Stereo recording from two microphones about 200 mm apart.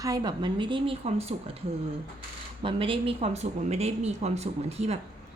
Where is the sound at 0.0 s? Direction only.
20° right (ahead or behind).